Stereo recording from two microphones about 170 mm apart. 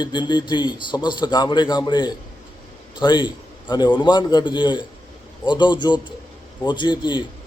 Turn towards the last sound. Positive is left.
turn(degrees=25)  # may be behind; listen again after turning